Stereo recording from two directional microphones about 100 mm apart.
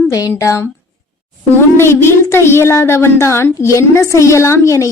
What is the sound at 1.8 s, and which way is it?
A child's voice, 25° left (ahead or behind).